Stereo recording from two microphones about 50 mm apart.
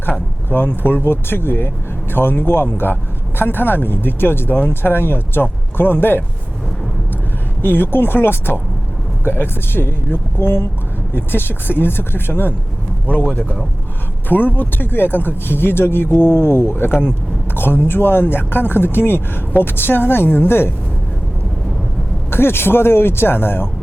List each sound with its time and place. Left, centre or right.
0.5 s speech: left
7.6 s a man's voice: left
22.3 s speech: left